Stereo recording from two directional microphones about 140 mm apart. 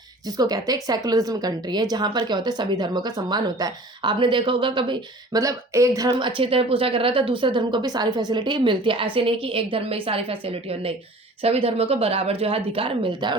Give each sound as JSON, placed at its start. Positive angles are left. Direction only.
{"t": 0.3, "sound": "a woman's voice", "side_deg": -25}
{"t": 6.1, "sound": "speech", "side_deg": -35}